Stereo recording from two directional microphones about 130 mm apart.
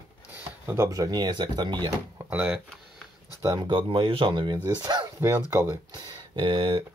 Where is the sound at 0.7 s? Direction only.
25° right (ahead or behind).